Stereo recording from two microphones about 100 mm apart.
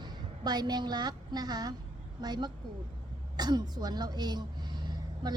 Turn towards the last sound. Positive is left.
turn(degrees=-45)  # may be behind; listen again after turning